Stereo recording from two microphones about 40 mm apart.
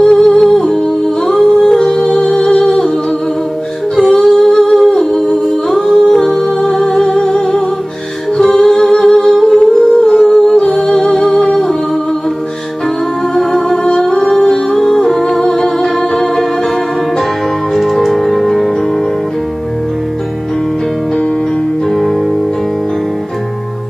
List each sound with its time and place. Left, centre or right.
0.0 s humming: centre
2.4 s music: left
3.9 s humming: centre
5.3 s music: centre
8.4 s humming: centre
10.8 s music: centre
11.1 s music: centre
13.3 s music: centre
18.1 s music: centre